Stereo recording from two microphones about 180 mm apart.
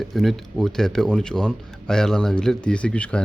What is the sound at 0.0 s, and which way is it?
Speech, centre (ahead or behind).